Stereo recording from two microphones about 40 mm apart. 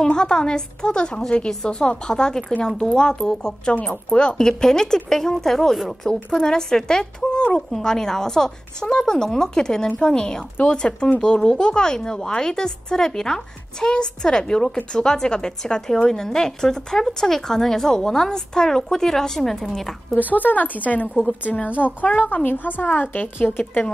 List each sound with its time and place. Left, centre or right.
0.1 s a woman's voice: left
6.0 s a woman's voice: left
6.4 s speech: centre
7.3 s a sound: left
7.7 s a woman's voice: centre
20.3 s a woman's voice: left
22.2 s a woman's voice: left